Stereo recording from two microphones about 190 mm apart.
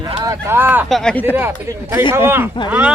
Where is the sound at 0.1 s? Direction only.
20° right (ahead or behind).